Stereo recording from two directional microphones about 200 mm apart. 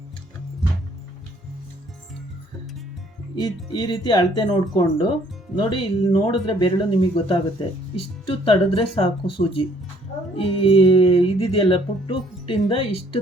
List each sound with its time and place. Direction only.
3.3 s music: 20° left (ahead or behind)